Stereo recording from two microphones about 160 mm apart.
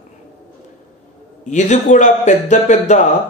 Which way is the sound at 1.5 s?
50° left (ahead or behind).